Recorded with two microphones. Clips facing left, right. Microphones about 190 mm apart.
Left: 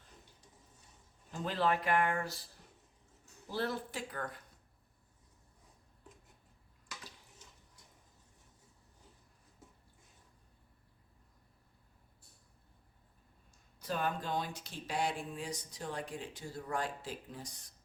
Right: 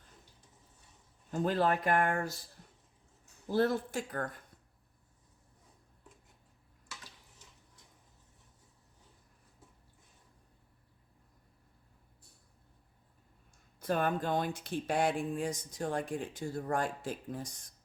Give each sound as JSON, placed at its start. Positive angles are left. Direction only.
{"t": 1.3, "sound": "speech", "side_deg": -45}
{"t": 3.5, "sound": "speech", "side_deg": -50}
{"t": 13.7, "sound": "speech", "side_deg": -55}